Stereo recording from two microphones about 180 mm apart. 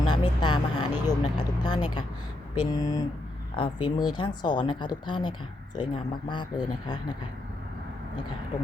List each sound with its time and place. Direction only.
0.1 s vehicle: 25° left (ahead or behind)
2.6 s speech: 20° left (ahead or behind)